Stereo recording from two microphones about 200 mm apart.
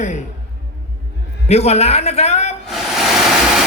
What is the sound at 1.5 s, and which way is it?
A man's voice, 30° left (ahead or behind).